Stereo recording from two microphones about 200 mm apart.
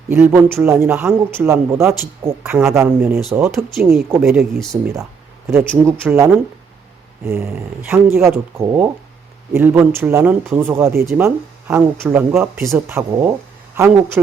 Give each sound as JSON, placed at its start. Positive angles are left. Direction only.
{"t": 0.1, "sound": "speech", "side_deg": -10}